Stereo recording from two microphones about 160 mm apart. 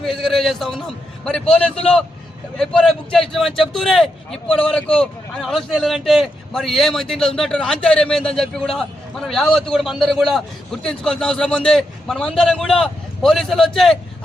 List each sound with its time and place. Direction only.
0.0 s speech: centre (ahead or behind)